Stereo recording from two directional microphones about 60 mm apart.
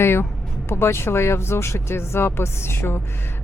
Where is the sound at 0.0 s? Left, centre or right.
Left.